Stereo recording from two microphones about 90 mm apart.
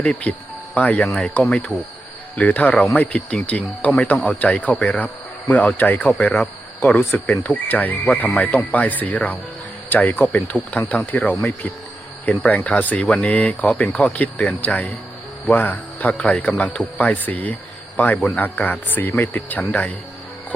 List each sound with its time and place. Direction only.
0.0 s speech: 15° left (ahead or behind)
12.5 s speech: 15° left (ahead or behind)